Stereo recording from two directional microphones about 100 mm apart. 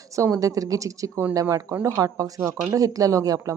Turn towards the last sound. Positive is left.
turn(degrees=-35)  # may be behind; listen again after turning